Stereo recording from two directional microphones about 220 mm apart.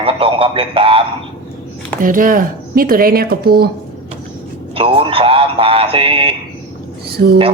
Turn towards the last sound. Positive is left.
turn(degrees=-45)  # may be behind; listen again after turning